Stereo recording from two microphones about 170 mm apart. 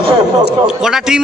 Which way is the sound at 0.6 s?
5° right (ahead or behind).